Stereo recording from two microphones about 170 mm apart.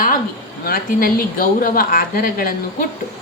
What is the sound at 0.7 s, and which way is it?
A woman's voice, 55° left (ahead or behind).